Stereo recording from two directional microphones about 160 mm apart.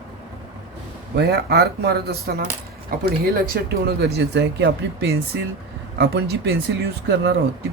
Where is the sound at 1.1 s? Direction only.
90° right.